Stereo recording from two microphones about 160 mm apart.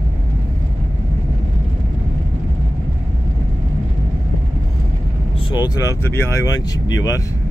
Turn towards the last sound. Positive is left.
turn(degrees=20)  # may be behind; listen again after turning